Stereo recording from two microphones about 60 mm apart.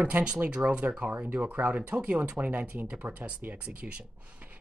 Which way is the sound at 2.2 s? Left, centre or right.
Right.